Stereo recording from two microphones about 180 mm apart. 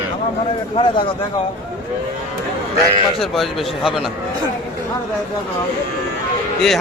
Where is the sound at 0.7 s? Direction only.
30° left (ahead or behind).